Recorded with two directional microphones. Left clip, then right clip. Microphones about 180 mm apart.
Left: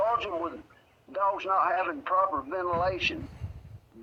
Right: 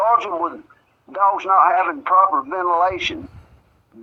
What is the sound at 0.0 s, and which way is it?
A man's voice, 45° right (ahead or behind).